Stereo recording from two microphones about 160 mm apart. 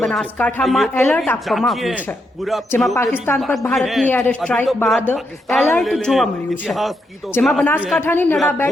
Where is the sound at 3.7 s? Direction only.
Centre (ahead or behind).